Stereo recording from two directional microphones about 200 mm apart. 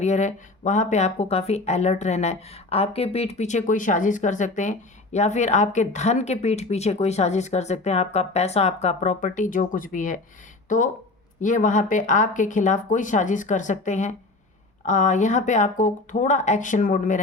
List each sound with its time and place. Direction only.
0.0 s speech: 35° left (ahead or behind)
11.3 s speech: 40° left (ahead or behind)